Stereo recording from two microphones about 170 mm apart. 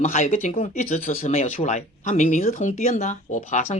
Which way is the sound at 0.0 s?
45° left (ahead or behind).